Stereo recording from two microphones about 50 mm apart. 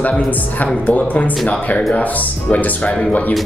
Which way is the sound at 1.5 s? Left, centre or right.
Left.